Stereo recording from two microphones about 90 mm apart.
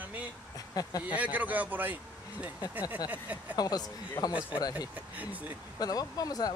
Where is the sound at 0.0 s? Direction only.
20° right (ahead or behind).